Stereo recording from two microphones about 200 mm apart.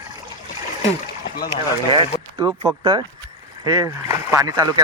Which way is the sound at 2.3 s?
20° right (ahead or behind).